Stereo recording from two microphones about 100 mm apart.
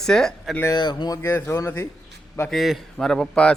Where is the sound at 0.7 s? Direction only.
45° left (ahead or behind).